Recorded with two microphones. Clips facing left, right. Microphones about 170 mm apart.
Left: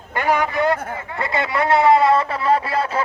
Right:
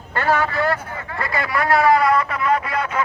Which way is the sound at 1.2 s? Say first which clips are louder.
Left 2 dB; 25° left (ahead or behind).